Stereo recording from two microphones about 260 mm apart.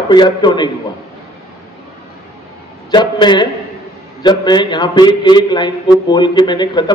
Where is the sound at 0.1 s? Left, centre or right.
Centre.